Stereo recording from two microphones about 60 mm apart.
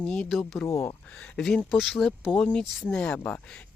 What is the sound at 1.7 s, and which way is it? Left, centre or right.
Speech, centre.